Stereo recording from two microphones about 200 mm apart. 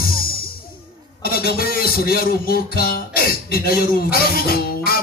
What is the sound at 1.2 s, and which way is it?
Speech, 50° left (ahead or behind).